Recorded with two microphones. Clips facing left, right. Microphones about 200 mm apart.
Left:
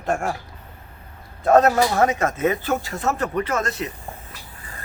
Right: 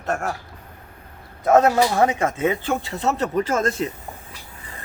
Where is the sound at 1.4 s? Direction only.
10° right (ahead or behind).